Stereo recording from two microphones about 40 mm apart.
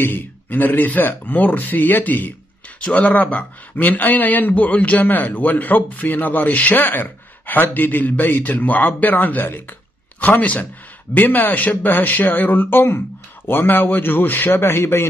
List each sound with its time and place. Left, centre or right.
0.0 s speech: left
2.8 s speech: left
6.8 s speech: left
11.1 s a man's voice: left